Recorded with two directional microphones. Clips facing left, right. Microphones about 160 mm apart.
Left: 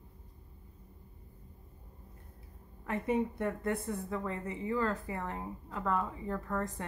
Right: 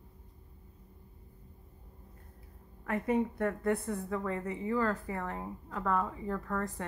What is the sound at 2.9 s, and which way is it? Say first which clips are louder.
A woman's voice: right 1 dB; 20° left (ahead or behind).